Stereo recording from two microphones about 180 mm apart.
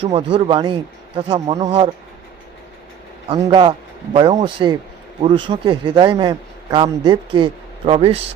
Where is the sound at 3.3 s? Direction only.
25° right (ahead or behind).